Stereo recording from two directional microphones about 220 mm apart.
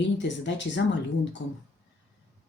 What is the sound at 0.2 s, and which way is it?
Speech, 55° left (ahead or behind).